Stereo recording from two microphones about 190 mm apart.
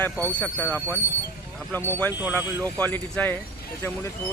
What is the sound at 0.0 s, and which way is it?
Speech, 10° left (ahead or behind).